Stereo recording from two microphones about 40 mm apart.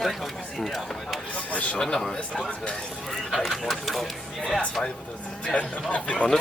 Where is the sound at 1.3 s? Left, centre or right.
Left.